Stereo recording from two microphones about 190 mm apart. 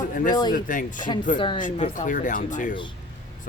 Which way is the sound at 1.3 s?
25° left (ahead or behind).